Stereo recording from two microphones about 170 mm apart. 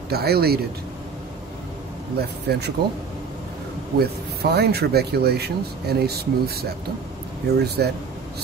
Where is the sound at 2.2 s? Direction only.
70° right (ahead or behind).